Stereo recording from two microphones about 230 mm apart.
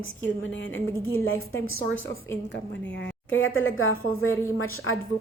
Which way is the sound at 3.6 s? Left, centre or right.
Left.